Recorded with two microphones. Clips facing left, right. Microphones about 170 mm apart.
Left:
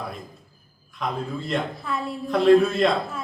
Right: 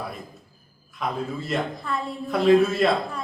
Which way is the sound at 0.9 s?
5° right (ahead or behind).